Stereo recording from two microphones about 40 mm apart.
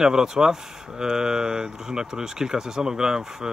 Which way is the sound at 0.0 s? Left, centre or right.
Centre.